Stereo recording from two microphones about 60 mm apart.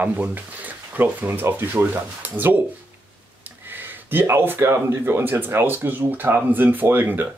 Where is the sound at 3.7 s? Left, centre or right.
Right.